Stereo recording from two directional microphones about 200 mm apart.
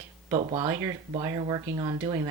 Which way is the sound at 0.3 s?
30° right (ahead or behind).